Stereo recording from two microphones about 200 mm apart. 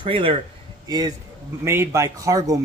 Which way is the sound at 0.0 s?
25° right (ahead or behind).